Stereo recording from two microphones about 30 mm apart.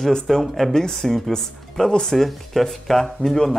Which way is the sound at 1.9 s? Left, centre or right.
Left.